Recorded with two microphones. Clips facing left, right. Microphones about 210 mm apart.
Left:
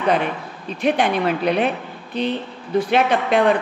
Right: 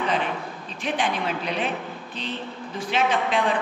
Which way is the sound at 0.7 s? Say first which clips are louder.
Left 8 dB; 60° left (ahead or behind).